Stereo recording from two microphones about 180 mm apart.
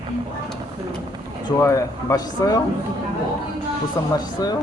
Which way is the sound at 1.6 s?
15° left (ahead or behind).